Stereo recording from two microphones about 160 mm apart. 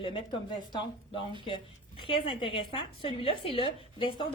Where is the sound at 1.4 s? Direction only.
30° left (ahead or behind).